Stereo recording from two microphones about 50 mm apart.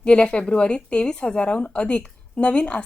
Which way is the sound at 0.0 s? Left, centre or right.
Left.